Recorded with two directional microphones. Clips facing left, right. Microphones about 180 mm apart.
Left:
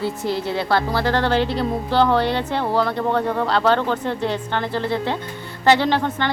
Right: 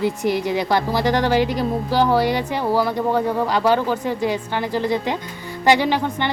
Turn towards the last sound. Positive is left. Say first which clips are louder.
# even
turn(degrees=-10)  # may be behind; listen again after turning